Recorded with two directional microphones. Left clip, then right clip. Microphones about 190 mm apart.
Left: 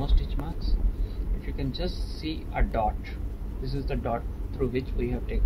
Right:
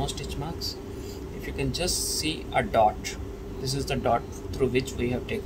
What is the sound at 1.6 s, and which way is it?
Speech, 30° right (ahead or behind).